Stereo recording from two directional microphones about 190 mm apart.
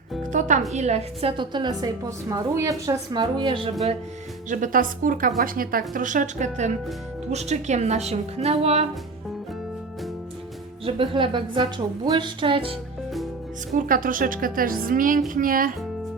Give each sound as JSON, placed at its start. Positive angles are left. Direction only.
{"t": 0.3, "sound": "music", "side_deg": -40}
{"t": 0.7, "sound": "a woman's voice", "side_deg": -35}
{"t": 4.4, "sound": "a woman's voice", "side_deg": -45}
{"t": 10.8, "sound": "a woman's voice", "side_deg": -30}
{"t": 13.7, "sound": "a woman's voice", "side_deg": -45}